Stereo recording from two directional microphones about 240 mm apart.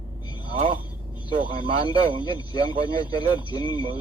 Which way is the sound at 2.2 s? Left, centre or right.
Centre.